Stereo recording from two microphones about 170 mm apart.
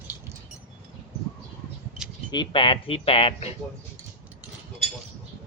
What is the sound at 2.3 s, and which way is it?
Speech, 30° left (ahead or behind).